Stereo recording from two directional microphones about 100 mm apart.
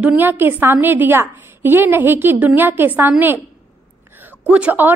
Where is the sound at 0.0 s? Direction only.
15° right (ahead or behind).